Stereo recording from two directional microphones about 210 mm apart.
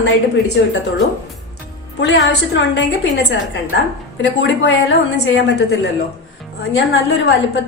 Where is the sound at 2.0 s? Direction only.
55° left (ahead or behind).